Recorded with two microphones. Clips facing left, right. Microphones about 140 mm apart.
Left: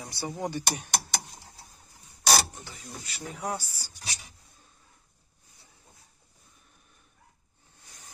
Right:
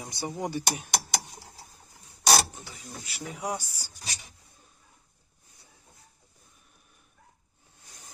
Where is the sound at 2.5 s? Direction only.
5° right (ahead or behind).